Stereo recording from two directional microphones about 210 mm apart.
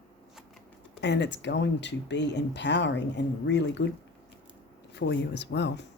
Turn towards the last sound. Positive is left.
turn(degrees=55)  # may be behind; listen again after turning